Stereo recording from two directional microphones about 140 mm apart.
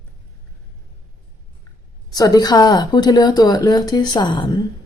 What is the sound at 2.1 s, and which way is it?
Speech, 25° left (ahead or behind).